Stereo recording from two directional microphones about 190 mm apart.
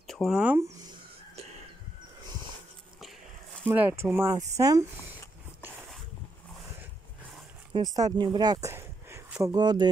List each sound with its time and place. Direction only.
0.0 s speech: centre (ahead or behind)
3.6 s speech: 10° right (ahead or behind)
7.7 s speech: 20° right (ahead or behind)